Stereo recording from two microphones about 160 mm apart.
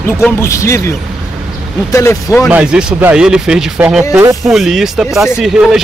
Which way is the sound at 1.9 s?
15° left (ahead or behind).